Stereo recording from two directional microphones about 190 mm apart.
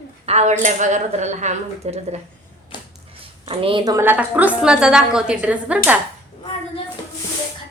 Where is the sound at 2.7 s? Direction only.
25° left (ahead or behind).